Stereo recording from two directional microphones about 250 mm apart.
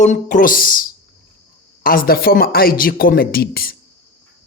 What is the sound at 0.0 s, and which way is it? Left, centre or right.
Speech, left.